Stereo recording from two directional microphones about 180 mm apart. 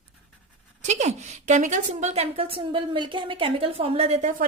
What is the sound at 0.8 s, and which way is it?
A woman's voice, 40° right (ahead or behind).